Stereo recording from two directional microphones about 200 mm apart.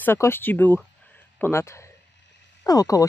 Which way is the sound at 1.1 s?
10° left (ahead or behind).